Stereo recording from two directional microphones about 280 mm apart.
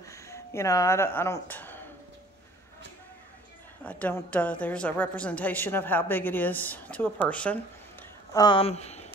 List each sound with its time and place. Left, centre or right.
0.0 s speech: centre
3.8 s a woman's voice: centre
8.3 s speech: centre